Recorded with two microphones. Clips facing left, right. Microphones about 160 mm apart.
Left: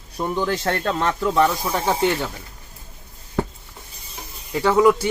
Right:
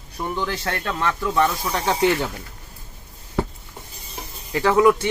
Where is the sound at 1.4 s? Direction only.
15° left (ahead or behind).